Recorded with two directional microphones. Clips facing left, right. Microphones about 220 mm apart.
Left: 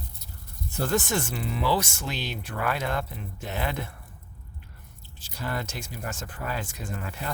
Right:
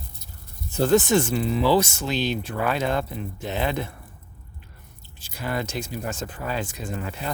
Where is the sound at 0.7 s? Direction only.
20° right (ahead or behind).